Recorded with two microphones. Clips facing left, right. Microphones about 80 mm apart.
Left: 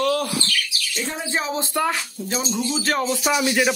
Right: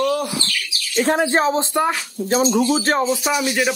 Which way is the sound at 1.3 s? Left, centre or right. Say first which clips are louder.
Right 6 dB; right.